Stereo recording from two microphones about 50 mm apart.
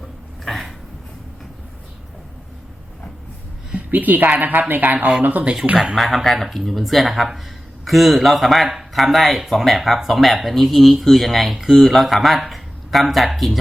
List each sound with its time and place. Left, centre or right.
0.4 s a sound: centre
3.8 s a woman's voice: right
5.7 s speech: centre
6.0 s speech: centre